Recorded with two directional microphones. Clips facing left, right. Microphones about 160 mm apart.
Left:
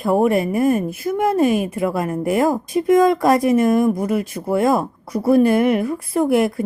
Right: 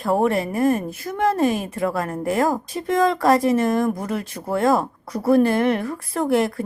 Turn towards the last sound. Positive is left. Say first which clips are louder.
# left 3 dB
turn(degrees=10)  # may be behind; listen again after turning